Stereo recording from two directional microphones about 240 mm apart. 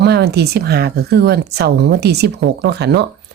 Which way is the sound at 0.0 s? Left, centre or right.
Right.